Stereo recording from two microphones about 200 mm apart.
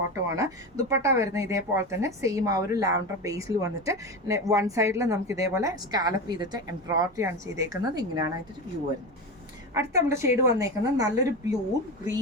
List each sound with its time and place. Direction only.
0.1 s speech: 15° right (ahead or behind)
9.7 s speech: 15° right (ahead or behind)